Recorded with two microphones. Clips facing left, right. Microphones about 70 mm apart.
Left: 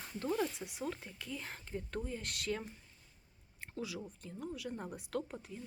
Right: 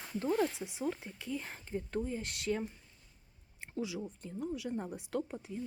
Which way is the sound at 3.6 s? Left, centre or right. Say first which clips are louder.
Right 4 dB; centre.